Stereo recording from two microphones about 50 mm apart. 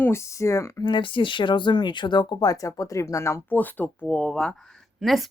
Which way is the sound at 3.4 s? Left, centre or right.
Left.